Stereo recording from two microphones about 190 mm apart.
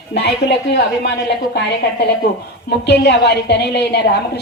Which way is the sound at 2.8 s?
60° left (ahead or behind).